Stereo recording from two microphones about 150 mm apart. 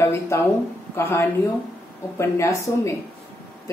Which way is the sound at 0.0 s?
20° left (ahead or behind).